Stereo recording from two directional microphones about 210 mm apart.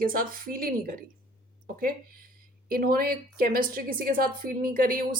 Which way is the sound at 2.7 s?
45° right (ahead or behind).